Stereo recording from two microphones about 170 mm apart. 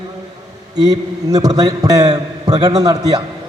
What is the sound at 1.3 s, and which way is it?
A man's voice, 20° right (ahead or behind).